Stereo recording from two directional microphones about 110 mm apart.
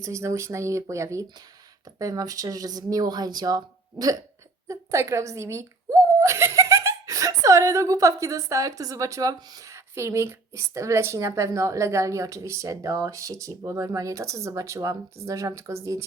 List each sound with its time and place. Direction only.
0.0 s speech: 25° right (ahead or behind)